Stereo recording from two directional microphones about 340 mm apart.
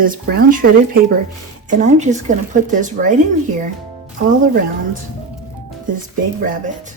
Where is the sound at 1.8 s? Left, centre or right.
Right.